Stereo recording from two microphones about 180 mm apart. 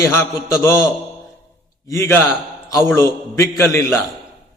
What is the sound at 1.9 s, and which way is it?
A man's voice, 15° left (ahead or behind).